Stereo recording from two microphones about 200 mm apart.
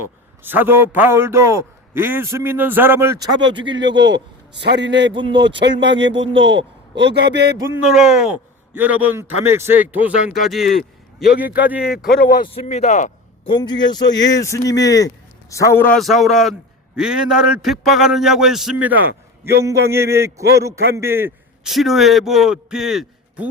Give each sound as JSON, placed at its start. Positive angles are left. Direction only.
{"t": 0.4, "sound": "a man's voice", "side_deg": -10}
{"t": 3.9, "sound": "a man's voice", "side_deg": -60}
{"t": 5.1, "sound": "speech", "side_deg": -25}
{"t": 5.5, "sound": "a man's voice", "side_deg": -60}
{"t": 7.9, "sound": "a man's voice", "side_deg": -5}
{"t": 11.9, "sound": "a man's voice", "side_deg": 50}
{"t": 12.5, "sound": "speech", "side_deg": 35}
{"t": 13.5, "sound": "a man's voice", "side_deg": 20}
{"t": 16.0, "sound": "a man's voice", "side_deg": 0}